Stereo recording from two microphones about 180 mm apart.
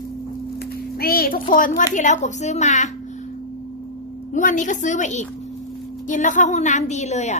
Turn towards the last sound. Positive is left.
turn(degrees=40)  # may be behind; listen again after turning